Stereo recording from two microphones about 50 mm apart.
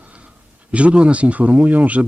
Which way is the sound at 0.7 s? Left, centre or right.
Right.